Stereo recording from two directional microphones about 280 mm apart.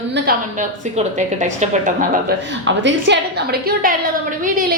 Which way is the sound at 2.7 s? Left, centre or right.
Right.